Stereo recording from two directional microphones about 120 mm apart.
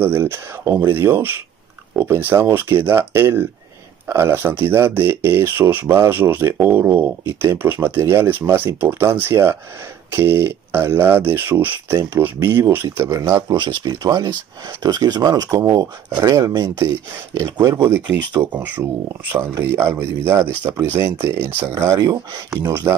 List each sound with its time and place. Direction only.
0.0 s speech: 20° right (ahead or behind)
13.5 s speech: 40° right (ahead or behind)
17.7 s speech: 20° right (ahead or behind)